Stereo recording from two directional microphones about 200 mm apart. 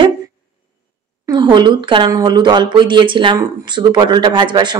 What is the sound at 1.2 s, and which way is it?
Speech, 20° right (ahead or behind).